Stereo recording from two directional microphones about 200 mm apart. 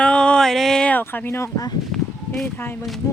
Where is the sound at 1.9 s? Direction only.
5° left (ahead or behind).